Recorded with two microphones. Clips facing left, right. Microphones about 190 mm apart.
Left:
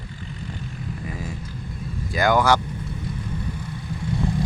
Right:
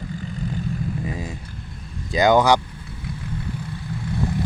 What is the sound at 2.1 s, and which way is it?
Speech, 20° right (ahead or behind).